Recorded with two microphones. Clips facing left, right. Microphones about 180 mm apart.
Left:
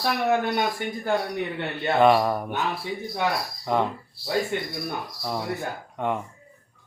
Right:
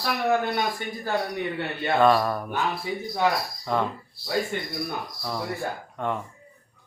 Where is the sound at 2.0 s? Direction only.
15° left (ahead or behind).